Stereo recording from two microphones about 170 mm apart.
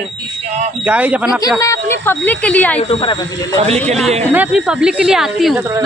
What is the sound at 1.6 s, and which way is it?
A woman's voice, 15° left (ahead or behind).